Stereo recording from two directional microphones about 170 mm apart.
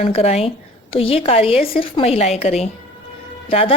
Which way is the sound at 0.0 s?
35° left (ahead or behind).